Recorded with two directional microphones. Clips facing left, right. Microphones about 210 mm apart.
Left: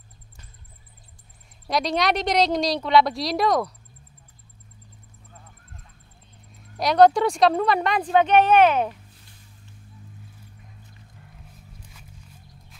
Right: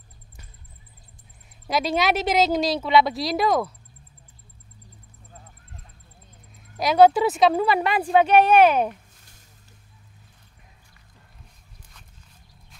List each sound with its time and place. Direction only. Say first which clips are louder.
1.7 s speech: even; 5° right (ahead or behind)
6.8 s speech: even; 5° right (ahead or behind)